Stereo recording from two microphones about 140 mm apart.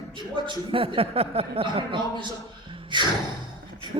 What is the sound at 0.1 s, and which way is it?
A man's voice, 35° right (ahead or behind).